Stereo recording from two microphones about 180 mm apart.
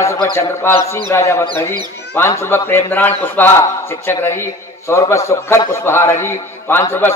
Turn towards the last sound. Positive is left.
turn(degrees=10)  # may be behind; listen again after turning